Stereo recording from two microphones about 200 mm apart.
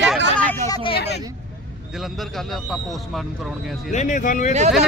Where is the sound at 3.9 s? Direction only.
40° left (ahead or behind).